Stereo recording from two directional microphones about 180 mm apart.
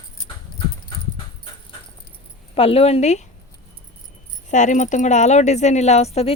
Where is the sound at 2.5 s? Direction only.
35° left (ahead or behind).